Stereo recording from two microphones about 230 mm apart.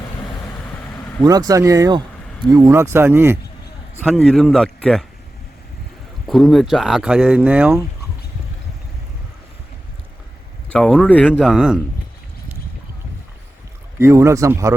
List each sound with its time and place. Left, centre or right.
1.2 s speech: centre
4.0 s speech: centre
6.2 s speech: centre
10.7 s speech: centre
14.0 s speech: centre